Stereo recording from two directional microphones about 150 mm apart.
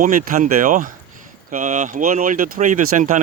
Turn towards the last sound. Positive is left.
turn(degrees=-55)  # may be behind; listen again after turning